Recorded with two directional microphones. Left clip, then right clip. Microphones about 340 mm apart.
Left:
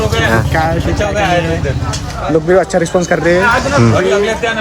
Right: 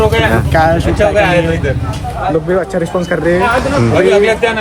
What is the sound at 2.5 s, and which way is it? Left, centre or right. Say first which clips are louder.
Speech: left 3 dB; left.